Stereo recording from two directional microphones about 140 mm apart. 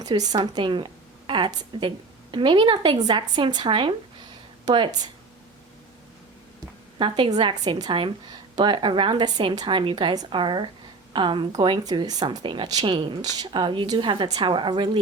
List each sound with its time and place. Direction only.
0.0 s speech: 30° right (ahead or behind)
7.0 s speech: 35° right (ahead or behind)